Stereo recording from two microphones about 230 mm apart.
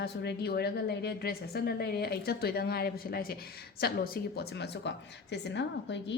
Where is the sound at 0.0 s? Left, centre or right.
Left.